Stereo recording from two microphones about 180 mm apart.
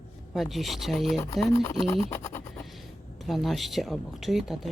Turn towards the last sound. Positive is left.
turn(degrees=0)  # may be behind; listen again after turning